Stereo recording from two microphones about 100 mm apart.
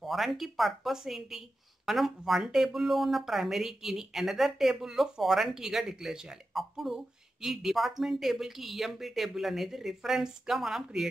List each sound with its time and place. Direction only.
0.0 s speech: centre (ahead or behind)